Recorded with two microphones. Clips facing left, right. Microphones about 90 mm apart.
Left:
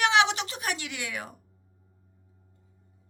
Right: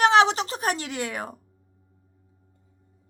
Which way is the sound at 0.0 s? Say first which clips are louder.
Right 5 dB; 40° right (ahead or behind).